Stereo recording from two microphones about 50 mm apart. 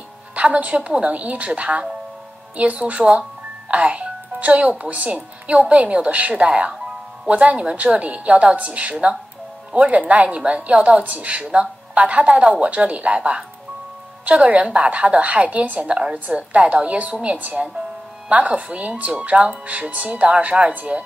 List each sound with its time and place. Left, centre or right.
0.4 s a woman's voice: right